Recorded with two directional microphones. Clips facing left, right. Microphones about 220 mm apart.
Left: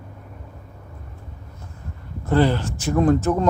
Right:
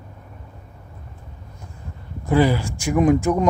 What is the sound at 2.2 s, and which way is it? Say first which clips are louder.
Speech: right 1 dB; 10° right (ahead or behind).